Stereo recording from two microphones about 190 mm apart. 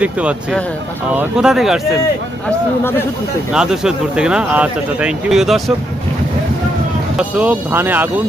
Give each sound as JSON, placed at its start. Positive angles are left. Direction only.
{"t": 0.0, "sound": "speech", "side_deg": -5}
{"t": 3.5, "sound": "speech", "side_deg": -5}
{"t": 7.2, "sound": "speech", "side_deg": -10}